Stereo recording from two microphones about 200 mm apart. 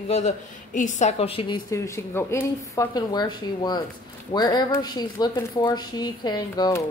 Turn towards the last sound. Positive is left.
turn(degrees=20)  # may be behind; listen again after turning